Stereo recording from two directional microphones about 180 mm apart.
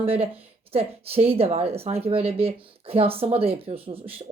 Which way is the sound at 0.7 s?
35° right (ahead or behind).